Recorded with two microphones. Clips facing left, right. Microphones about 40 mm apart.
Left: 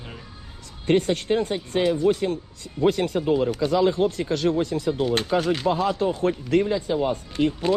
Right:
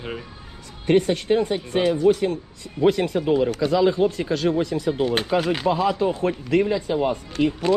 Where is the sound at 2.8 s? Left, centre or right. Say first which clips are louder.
Right 2 dB; right.